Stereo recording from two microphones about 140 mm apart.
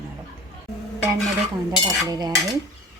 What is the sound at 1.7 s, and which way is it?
Cutlery, 30° right (ahead or behind).